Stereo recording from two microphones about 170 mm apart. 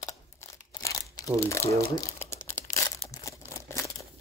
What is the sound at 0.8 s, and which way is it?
Crumpling, 20° left (ahead or behind).